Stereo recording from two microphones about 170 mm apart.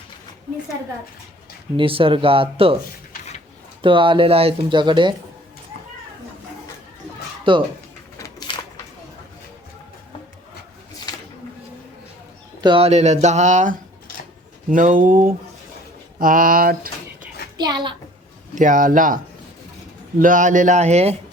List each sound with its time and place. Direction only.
1.7 s speech: 30° right (ahead or behind)
3.8 s speech: 30° right (ahead or behind)
7.5 s speech: 30° right (ahead or behind)
8.2 s a sound: 25° left (ahead or behind)
12.6 s speech: 35° right (ahead or behind); by 16.9 s 55° right (ahead or behind)
17.6 s speech: 25° right (ahead or behind)
18.5 s speech: 50° right (ahead or behind)